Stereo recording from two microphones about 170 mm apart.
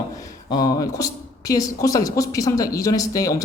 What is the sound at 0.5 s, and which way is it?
Speech, 20° left (ahead or behind).